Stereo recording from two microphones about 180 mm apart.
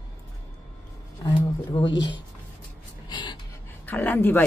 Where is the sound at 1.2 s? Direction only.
25° left (ahead or behind).